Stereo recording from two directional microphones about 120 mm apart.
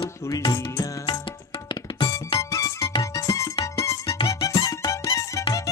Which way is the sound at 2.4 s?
25° left (ahead or behind).